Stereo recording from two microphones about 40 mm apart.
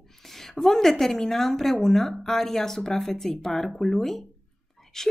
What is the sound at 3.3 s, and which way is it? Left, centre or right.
Speech, centre.